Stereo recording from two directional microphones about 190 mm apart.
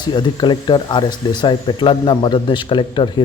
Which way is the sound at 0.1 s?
25° left (ahead or behind).